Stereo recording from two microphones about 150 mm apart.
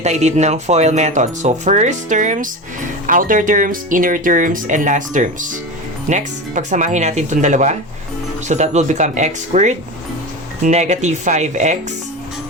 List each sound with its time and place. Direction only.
0.0 s speech: 50° right (ahead or behind)